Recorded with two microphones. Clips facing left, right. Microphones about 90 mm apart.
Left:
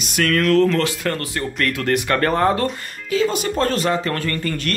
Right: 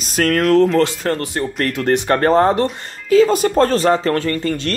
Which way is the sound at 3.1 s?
40° right (ahead or behind).